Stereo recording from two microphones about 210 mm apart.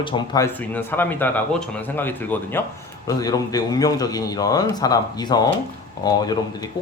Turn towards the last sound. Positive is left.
turn(degrees=20)  # may be behind; listen again after turning